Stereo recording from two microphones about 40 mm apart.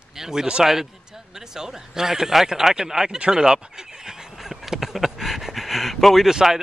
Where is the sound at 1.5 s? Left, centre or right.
Centre.